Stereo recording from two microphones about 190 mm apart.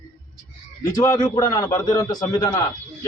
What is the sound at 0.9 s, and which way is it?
A man's voice, 15° left (ahead or behind).